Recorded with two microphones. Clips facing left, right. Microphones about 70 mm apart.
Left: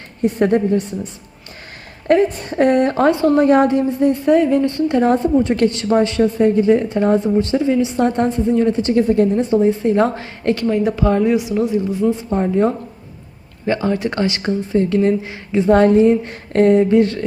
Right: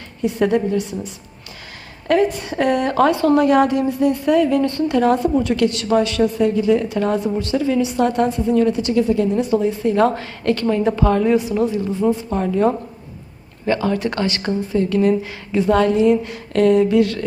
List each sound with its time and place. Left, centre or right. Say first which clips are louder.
0.2 s speech: left 2 dB; left
2.0 s a woman's voice: left 2 dB; left
9.3 s a woman's voice: left 3 dB; left
15.7 s speech: left 4 dB; left